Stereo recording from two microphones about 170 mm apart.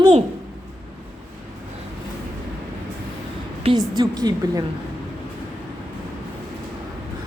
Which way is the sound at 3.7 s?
25° right (ahead or behind).